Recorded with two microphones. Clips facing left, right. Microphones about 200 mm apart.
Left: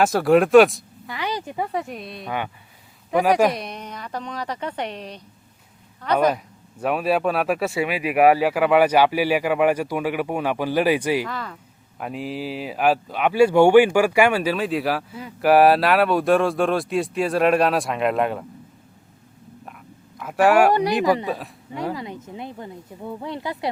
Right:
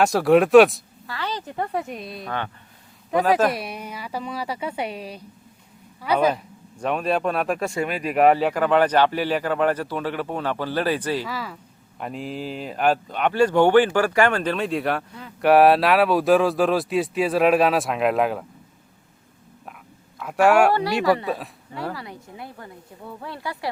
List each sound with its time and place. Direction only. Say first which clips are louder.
0.0 s speech: even; centre (ahead or behind)
1.0 s a woman's voice: left 2 dB; 15° left (ahead or behind); by 5.2 s 5° right (ahead or behind)
6.3 s speech: left 1 dB; 5° left (ahead or behind)
11.3 s speech: even; 5° right (ahead or behind)
20.2 s speech: left 1 dB; centre (ahead or behind)
21.0 s a woman's voice: even; 20° left (ahead or behind)
21.2 s speech: even; centre (ahead or behind)
21.7 s a woman's voice: left 4 dB; 15° left (ahead or behind)